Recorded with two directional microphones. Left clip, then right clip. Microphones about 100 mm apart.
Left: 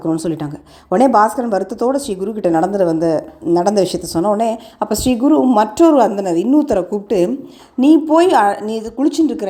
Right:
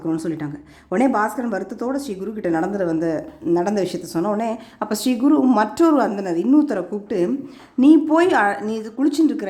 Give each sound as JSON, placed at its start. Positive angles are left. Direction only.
{"t": 0.2, "sound": "a woman's voice", "side_deg": 30}
{"t": 7.8, "sound": "a woman's voice", "side_deg": 20}